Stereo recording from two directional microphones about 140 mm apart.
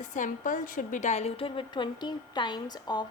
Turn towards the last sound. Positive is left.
turn(degrees=30)  # may be behind; listen again after turning